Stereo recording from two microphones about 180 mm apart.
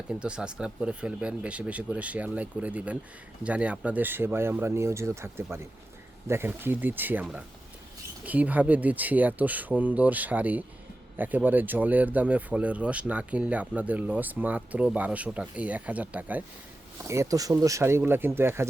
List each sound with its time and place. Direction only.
0.1 s speech: 5° right (ahead or behind)